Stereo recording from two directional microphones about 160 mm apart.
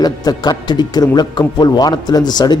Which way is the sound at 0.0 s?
25° left (ahead or behind).